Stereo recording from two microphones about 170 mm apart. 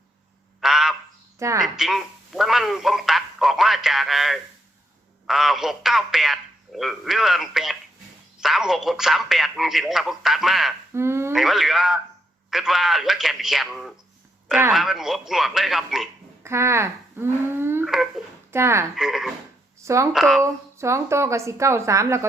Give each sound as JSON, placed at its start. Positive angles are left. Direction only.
{"t": 0.6, "sound": "frog", "side_deg": 0}
{"t": 1.4, "sound": "a woman's voice", "side_deg": -15}
{"t": 1.6, "sound": "a man's voice", "side_deg": 0}
{"t": 10.9, "sound": "a woman's voice", "side_deg": -15}
{"t": 11.3, "sound": "a man's voice", "side_deg": 0}
{"t": 16.4, "sound": "speech", "side_deg": -15}
{"t": 17.8, "sound": "a sound", "side_deg": 0}
{"t": 18.5, "sound": "a woman's voice", "side_deg": -15}
{"t": 18.9, "sound": "a man's voice", "side_deg": 0}
{"t": 19.8, "sound": "speech", "side_deg": -15}
{"t": 20.1, "sound": "a man's voice", "side_deg": 0}
{"t": 20.4, "sound": "a woman's voice", "side_deg": -15}